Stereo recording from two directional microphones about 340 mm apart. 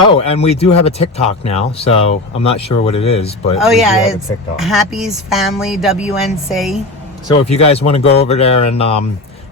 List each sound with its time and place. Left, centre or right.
0.3 s speech: centre
3.6 s speech: centre
7.3 s speech: centre